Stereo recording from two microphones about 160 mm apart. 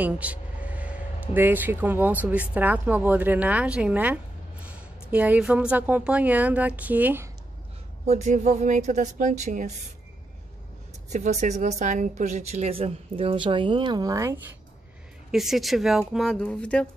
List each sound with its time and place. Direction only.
0.0 s vehicle: 10° right (ahead or behind)
1.3 s a woman's voice: 10° right (ahead or behind)
8.1 s speech: 45° right (ahead or behind)
11.1 s speech: 45° right (ahead or behind); by 14.4 s 20° right (ahead or behind)
15.3 s speech: centre (ahead or behind)